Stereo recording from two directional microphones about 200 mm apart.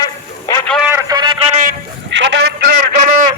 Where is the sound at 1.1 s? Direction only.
20° right (ahead or behind).